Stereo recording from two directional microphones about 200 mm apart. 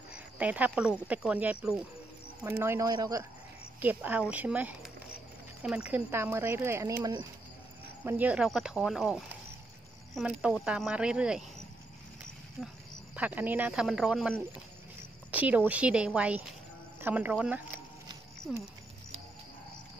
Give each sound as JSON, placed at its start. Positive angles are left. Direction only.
{"t": 0.1, "sound": "speech", "side_deg": -5}
{"t": 2.6, "sound": "speech", "side_deg": -15}
{"t": 12.6, "sound": "speech", "side_deg": 0}